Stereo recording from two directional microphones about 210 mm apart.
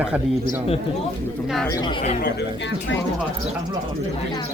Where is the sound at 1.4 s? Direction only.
Centre (ahead or behind).